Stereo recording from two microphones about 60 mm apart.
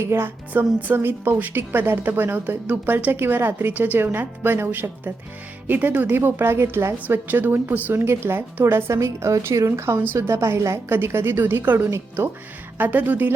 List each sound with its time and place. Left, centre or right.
0.0 s a woman's voice: right
7.3 s a woman's voice: right
7.9 s a woman's voice: right
8.6 s a woman's voice: right
10.8 s speech: right
12.8 s a woman's voice: right